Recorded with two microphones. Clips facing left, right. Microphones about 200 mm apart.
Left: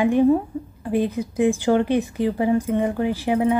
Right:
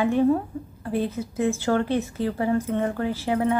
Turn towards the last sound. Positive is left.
turn(degrees=15)  # may be behind; listen again after turning